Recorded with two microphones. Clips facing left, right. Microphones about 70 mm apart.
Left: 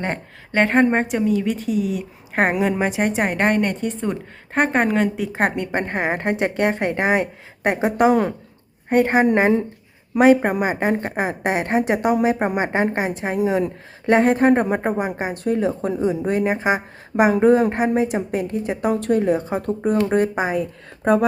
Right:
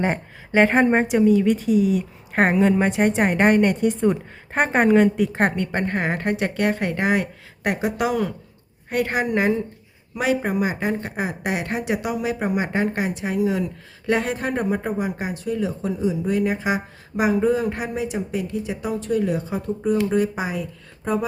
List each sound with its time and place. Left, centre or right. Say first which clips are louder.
0.0 s a woman's voice: right 3 dB; centre
5.5 s a woman's voice: left 1 dB; centre
9.2 s speech: left 4 dB; left
19.2 s speech: left 4 dB; left